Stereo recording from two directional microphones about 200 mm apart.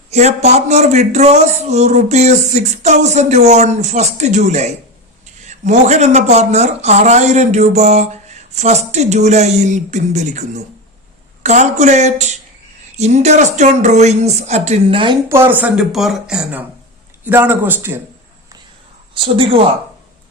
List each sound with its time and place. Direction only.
0.1 s a woman's voice: 35° right (ahead or behind)
15.3 s a woman's voice: 10° right (ahead or behind)
19.1 s speech: 25° right (ahead or behind)